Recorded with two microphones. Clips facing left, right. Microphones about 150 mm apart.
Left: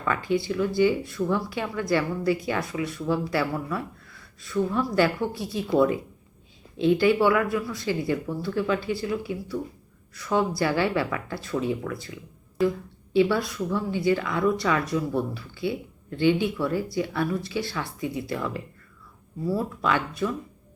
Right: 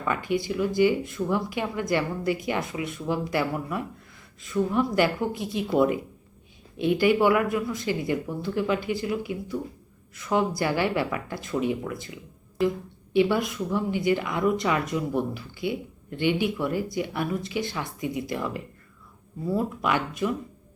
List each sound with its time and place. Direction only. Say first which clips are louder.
0.0 s speech: left 1 dB; 15° right (ahead or behind)
10.2 s speech: left 1 dB; 20° right (ahead or behind)
13.1 s speech: even; 20° right (ahead or behind)